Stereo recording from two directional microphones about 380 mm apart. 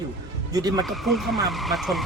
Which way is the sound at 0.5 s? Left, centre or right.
Centre.